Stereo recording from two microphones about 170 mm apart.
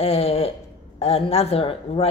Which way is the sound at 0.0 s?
35° left (ahead or behind).